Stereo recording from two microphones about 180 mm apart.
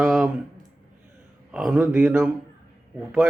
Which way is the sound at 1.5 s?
5° right (ahead or behind).